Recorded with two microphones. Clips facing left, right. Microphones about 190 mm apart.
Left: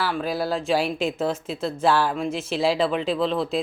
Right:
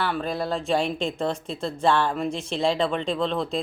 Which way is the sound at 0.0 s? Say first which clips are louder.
Left 1 dB; 5° left (ahead or behind).